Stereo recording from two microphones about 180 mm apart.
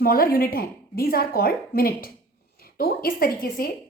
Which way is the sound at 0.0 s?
55° left (ahead or behind).